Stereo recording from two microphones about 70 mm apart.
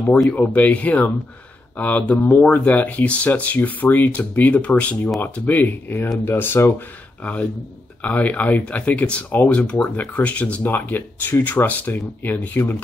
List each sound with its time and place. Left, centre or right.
0.3 s speech: centre
8.0 s speech: left